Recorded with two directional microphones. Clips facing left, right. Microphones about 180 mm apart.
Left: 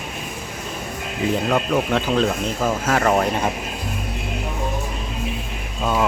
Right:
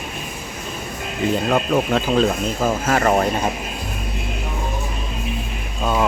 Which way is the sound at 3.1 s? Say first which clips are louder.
Right 1 dB; 15° right (ahead or behind).